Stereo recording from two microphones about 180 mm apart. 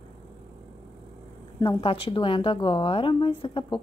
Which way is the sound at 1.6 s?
25° left (ahead or behind).